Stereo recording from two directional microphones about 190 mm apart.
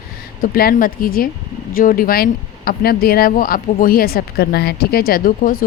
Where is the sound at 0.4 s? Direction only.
50° left (ahead or behind).